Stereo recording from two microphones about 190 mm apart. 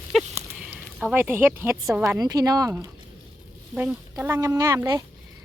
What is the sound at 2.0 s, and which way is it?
Speech, 15° right (ahead or behind).